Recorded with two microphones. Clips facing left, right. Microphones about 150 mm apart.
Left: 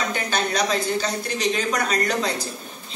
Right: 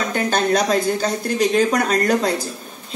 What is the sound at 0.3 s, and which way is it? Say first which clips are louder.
Speech: right 6 dB; 50° right (ahead or behind).